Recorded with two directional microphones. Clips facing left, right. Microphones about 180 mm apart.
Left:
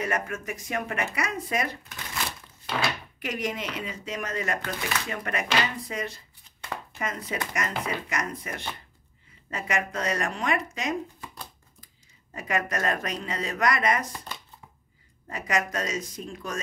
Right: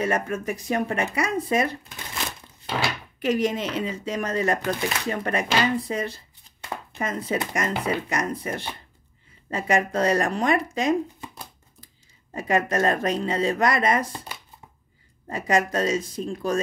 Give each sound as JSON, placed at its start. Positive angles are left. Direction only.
{"t": 0.0, "sound": "speech", "side_deg": -30}
{"t": 3.2, "sound": "speech", "side_deg": -30}
{"t": 12.4, "sound": "speech", "side_deg": -30}
{"t": 15.2, "sound": "speech", "side_deg": -30}